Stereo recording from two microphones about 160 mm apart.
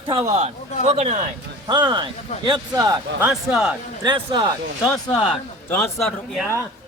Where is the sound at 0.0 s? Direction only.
20° right (ahead or behind).